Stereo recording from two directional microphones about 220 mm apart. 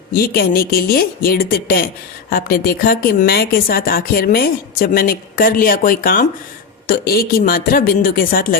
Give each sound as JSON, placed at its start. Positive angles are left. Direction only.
{"t": 0.1, "sound": "speech", "side_deg": 45}